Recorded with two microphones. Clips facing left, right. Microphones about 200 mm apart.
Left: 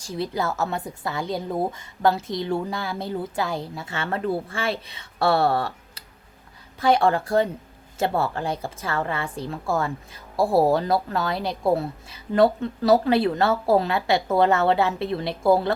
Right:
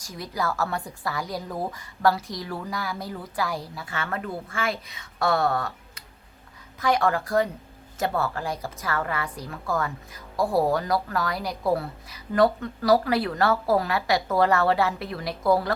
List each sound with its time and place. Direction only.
0.0 s a woman's voice: 30° left (ahead or behind)